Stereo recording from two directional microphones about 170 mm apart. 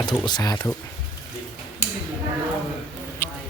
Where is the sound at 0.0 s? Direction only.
25° left (ahead or behind).